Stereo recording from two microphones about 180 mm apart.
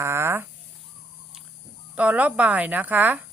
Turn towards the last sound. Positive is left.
turn(degrees=-10)  # may be behind; listen again after turning